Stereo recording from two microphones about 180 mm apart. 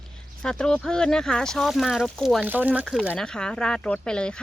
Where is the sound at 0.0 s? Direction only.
5° left (ahead or behind).